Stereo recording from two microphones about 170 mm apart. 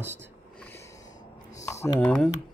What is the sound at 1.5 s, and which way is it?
Typing, 15° left (ahead or behind).